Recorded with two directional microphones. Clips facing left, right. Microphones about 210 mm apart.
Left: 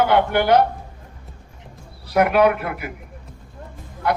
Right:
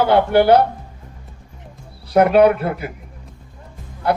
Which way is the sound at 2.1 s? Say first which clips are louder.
Right 4 dB; 30° right (ahead or behind).